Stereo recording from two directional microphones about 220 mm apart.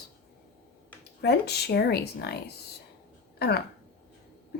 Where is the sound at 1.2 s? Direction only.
50° left (ahead or behind).